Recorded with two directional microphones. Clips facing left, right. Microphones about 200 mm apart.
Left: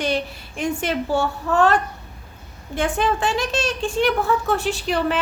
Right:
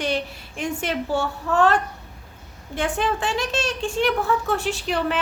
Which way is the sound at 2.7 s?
45° left (ahead or behind).